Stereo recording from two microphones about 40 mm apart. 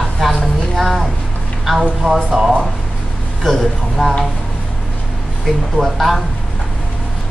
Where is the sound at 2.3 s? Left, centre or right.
Centre.